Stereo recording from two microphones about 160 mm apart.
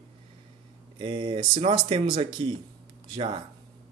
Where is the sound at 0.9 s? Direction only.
30° right (ahead or behind).